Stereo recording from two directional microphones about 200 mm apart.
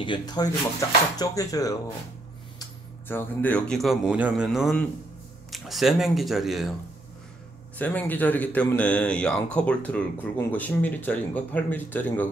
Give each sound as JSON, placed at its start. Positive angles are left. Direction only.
{"t": 0.0, "sound": "speech", "side_deg": 20}
{"t": 7.7, "sound": "speech", "side_deg": 10}